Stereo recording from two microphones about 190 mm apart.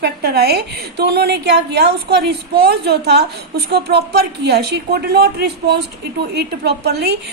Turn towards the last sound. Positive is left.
turn(degrees=-60)  # may be behind; listen again after turning